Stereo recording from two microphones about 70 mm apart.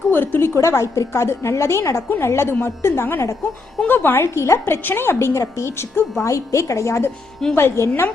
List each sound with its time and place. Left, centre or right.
0.1 s a woman's voice: left
6.2 s a woman's voice: left